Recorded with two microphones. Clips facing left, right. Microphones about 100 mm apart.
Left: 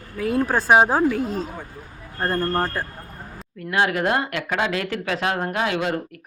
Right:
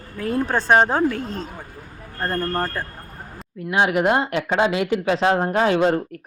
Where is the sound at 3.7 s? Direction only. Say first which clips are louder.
Right 2 dB; 20° right (ahead or behind).